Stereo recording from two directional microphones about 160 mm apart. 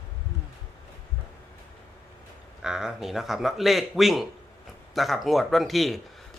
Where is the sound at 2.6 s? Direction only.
5° right (ahead or behind).